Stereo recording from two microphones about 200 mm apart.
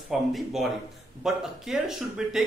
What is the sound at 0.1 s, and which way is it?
A man's voice, centre (ahead or behind).